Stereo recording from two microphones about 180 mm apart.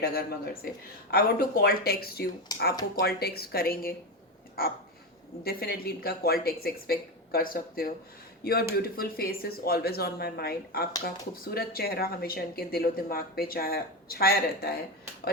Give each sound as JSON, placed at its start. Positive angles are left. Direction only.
{"t": 0.0, "sound": "speech", "side_deg": 55}